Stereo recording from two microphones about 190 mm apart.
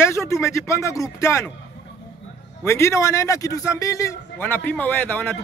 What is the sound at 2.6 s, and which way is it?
A man's voice, 15° left (ahead or behind).